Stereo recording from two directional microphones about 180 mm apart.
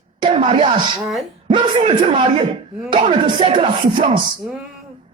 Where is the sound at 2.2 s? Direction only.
25° right (ahead or behind).